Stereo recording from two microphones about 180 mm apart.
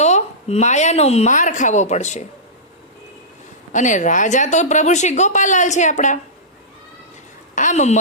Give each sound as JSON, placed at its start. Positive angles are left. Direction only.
{"t": 0.0, "sound": "a woman's voice", "side_deg": 40}
{"t": 3.7, "sound": "a woman's voice", "side_deg": 45}
{"t": 7.5, "sound": "a woman's voice", "side_deg": 45}